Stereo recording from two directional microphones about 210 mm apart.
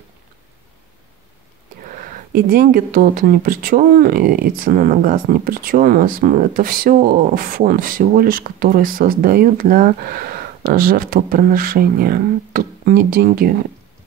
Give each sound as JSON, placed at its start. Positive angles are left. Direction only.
{"t": 2.3, "sound": "speech", "side_deg": -45}